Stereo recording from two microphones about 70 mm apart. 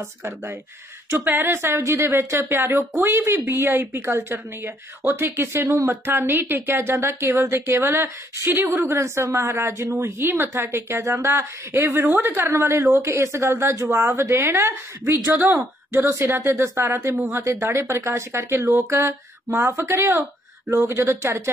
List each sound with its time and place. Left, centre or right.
1.1 s speech: right